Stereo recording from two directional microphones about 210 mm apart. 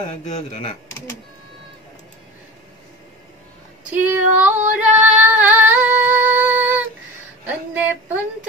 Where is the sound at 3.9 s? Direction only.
10° right (ahead or behind).